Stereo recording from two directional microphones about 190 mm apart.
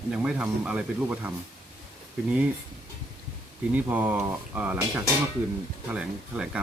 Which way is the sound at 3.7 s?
10° right (ahead or behind).